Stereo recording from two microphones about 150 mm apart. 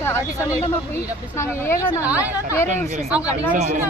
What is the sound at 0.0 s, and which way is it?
Speech, 20° left (ahead or behind).